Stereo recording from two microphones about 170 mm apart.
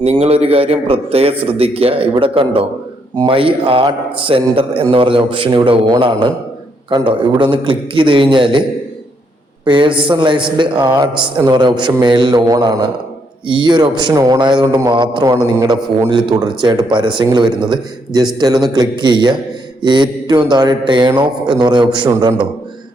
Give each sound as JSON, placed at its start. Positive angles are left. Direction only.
{"t": 0.0, "sound": "a man's voice", "side_deg": -35}
{"t": 9.6, "sound": "a man's voice", "side_deg": -30}